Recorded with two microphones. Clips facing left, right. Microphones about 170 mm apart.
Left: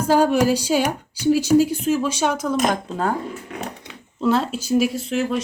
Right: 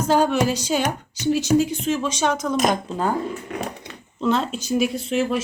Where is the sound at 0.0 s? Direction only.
10° left (ahead or behind).